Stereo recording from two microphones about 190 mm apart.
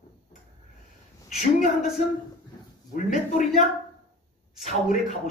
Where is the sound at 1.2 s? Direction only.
40° left (ahead or behind).